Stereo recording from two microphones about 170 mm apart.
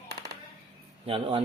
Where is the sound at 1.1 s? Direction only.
30° right (ahead or behind).